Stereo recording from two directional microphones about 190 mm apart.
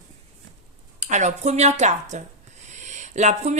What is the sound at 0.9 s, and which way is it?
Speech, 35° right (ahead or behind).